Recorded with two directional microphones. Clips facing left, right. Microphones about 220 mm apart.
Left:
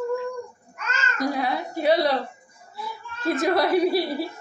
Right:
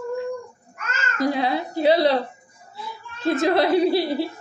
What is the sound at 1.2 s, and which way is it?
Speech, 25° right (ahead or behind).